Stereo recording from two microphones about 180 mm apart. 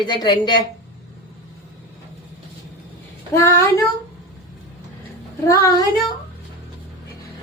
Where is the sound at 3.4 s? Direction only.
15° left (ahead or behind).